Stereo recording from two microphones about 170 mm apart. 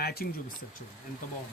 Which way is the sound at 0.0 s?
65° left (ahead or behind).